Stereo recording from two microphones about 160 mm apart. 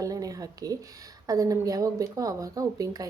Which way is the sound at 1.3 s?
20° right (ahead or behind).